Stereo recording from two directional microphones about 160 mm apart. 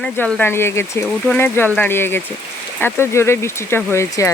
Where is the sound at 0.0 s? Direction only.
5° left (ahead or behind).